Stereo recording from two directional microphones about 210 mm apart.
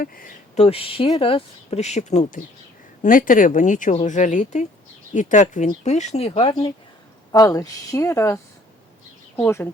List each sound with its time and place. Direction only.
0.0 s a woman's voice: 40° left (ahead or behind); by 9.6 s 10° left (ahead or behind)